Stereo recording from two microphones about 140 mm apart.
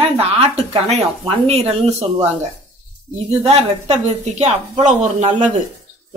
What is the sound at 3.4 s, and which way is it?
Speech, 50° right (ahead or behind).